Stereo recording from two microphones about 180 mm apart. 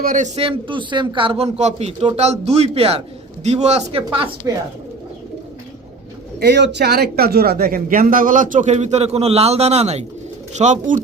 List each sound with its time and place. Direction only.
0.0 s speech: 45° right (ahead or behind)
0.3 s speech: 30° right (ahead or behind)
6.4 s speech: 70° right (ahead or behind); by 11.0 s 45° right (ahead or behind)